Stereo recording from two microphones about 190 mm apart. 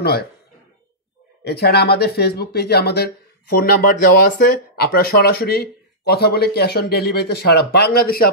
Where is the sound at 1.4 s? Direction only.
55° left (ahead or behind).